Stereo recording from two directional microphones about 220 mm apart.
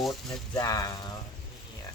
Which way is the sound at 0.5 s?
15° left (ahead or behind).